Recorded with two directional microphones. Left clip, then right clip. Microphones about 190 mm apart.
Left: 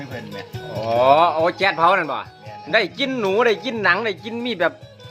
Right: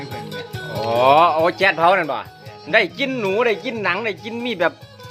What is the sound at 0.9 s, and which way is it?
Speech, 10° right (ahead or behind).